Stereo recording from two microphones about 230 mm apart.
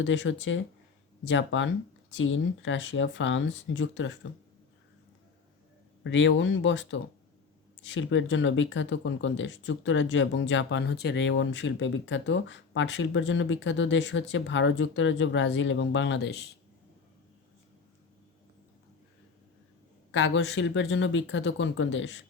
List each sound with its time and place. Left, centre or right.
0.0 s speech: left
6.0 s speech: left
20.1 s speech: left